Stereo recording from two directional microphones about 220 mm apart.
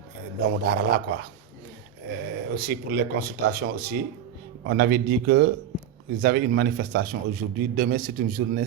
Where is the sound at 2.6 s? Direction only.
45° right (ahead or behind).